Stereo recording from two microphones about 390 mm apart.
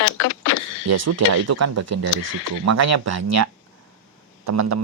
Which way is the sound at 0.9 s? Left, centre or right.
Right.